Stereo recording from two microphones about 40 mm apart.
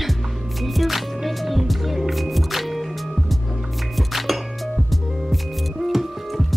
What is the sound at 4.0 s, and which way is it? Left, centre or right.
Music, centre.